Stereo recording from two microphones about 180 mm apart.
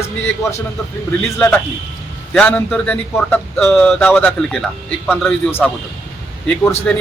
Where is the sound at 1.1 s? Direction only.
10° left (ahead or behind).